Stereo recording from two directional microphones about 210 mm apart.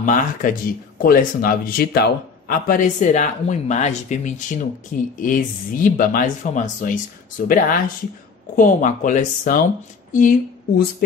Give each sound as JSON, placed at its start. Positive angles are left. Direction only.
{"t": 0.0, "sound": "a woman's voice", "side_deg": 40}